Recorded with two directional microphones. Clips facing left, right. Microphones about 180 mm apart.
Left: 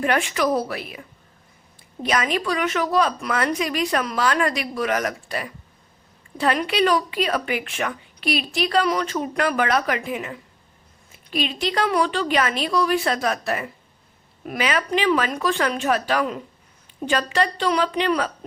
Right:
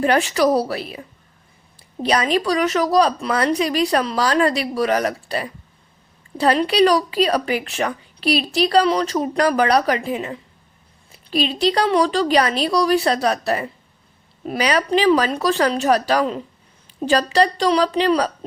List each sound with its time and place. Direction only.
0.0 s a woman's voice: 35° right (ahead or behind)